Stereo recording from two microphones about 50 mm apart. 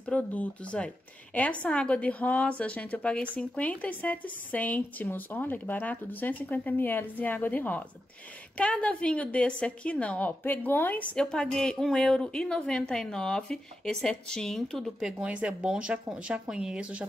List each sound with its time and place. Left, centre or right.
0.0 s a woman's voice: left
8.5 s a woman's voice: left
10.4 s a woman's voice: left
11.1 s speech: centre
15.1 s speech: right